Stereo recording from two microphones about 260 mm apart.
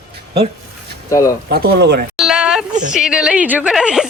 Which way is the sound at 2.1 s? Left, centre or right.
Centre.